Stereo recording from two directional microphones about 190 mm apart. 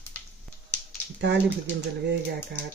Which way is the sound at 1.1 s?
65° right (ahead or behind).